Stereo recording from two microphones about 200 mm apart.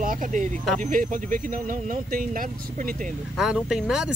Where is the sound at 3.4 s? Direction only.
5° right (ahead or behind).